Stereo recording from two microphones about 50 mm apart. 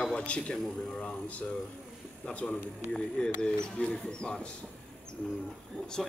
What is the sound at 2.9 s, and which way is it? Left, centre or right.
Speech, centre.